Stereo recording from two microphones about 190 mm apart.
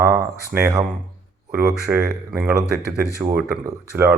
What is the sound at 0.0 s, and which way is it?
Speech, 15° right (ahead or behind).